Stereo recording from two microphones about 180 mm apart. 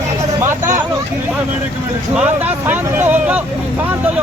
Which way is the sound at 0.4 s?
15° right (ahead or behind).